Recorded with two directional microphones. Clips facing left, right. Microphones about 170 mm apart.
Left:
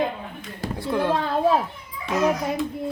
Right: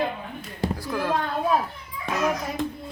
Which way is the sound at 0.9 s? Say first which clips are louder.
Left 6 dB; 25° left (ahead or behind).